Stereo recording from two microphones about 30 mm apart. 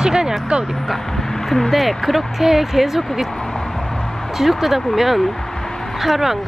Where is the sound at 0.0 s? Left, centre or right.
Right.